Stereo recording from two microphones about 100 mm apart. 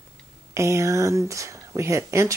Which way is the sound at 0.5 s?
30° right (ahead or behind).